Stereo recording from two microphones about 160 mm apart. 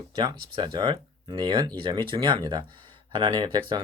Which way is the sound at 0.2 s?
25° right (ahead or behind).